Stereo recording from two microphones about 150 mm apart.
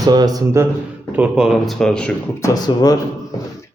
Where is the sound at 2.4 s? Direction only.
25° left (ahead or behind).